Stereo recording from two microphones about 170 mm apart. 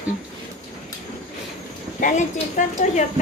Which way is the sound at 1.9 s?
50° left (ahead or behind).